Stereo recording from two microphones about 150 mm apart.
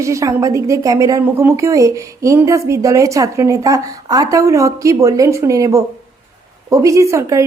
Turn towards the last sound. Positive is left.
turn(degrees=-20)  # may be behind; listen again after turning